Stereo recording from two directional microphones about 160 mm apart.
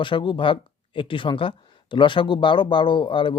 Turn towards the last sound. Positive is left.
turn(degrees=30)  # may be behind; listen again after turning